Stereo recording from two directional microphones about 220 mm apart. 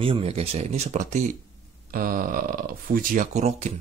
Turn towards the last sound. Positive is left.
turn(degrees=-35)  # may be behind; listen again after turning